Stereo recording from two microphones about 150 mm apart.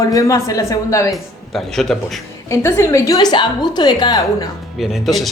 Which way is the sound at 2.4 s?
20° left (ahead or behind).